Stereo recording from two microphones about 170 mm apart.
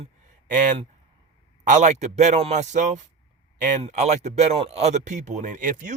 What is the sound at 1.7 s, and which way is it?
Speech, 45° right (ahead or behind).